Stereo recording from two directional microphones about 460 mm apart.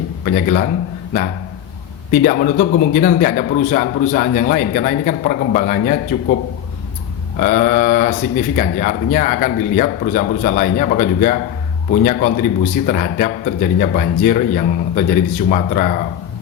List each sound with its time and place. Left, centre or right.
0.3 s a man's voice: centre
2.2 s a man's voice: centre
7.3 s a man's voice: centre